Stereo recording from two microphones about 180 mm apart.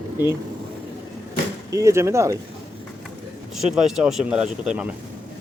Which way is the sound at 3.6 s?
Centre (ahead or behind).